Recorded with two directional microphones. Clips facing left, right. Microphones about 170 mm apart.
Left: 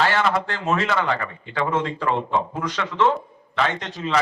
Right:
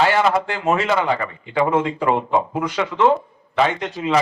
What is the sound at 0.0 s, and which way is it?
A man's voice, 15° right (ahead or behind).